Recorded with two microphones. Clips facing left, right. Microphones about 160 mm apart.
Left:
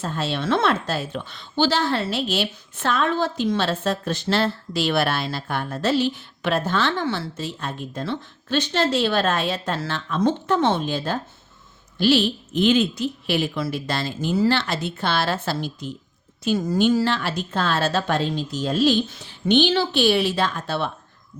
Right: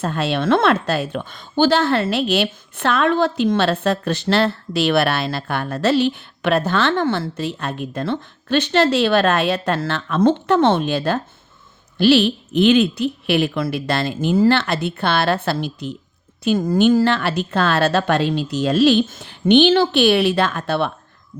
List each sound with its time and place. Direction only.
0.0 s a woman's voice: 65° right (ahead or behind)
19.0 s a woman's voice: 50° right (ahead or behind)